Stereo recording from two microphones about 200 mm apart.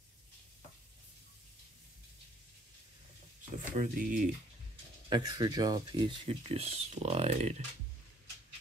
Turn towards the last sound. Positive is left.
turn(degrees=-35)  # may be behind; listen again after turning